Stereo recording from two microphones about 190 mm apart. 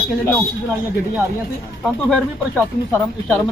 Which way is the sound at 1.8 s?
Centre (ahead or behind).